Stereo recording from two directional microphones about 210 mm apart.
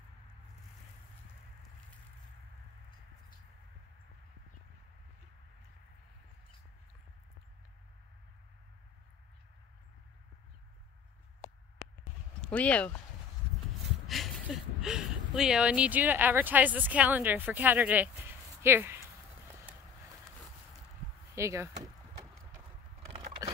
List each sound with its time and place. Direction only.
12.4 s speech: 5° left (ahead or behind)
14.0 s speech: centre (ahead or behind)
21.4 s door: 15° right (ahead or behind)
23.0 s a sound: 30° right (ahead or behind)